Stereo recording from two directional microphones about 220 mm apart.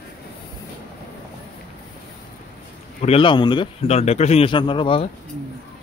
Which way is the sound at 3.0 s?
25° left (ahead or behind).